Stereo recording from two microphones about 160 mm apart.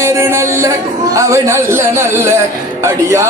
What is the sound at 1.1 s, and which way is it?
A man's voice, 20° right (ahead or behind).